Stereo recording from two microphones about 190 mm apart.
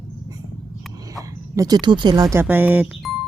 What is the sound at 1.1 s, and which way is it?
Speech, 20° right (ahead or behind).